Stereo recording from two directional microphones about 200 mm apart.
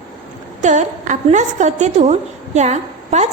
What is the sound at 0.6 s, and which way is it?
A woman's voice, 35° right (ahead or behind).